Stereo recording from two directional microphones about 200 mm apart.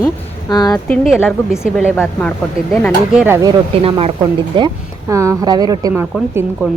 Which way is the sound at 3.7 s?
30° right (ahead or behind).